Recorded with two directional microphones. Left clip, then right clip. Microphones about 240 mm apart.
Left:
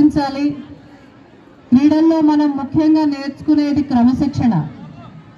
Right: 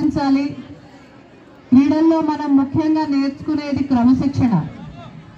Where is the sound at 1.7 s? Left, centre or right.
Left.